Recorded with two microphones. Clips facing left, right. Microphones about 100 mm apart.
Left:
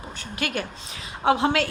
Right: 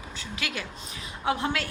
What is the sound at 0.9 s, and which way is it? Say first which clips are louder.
Speech: left 7 dB; 80° left.